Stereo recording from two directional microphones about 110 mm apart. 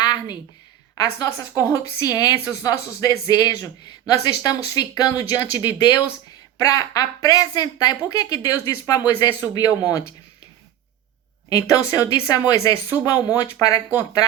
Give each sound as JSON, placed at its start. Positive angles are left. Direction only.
{"t": 0.0, "sound": "a sound", "side_deg": 40}
{"t": 0.9, "sound": "a woman's voice", "side_deg": 30}
{"t": 11.4, "sound": "a woman's voice", "side_deg": 30}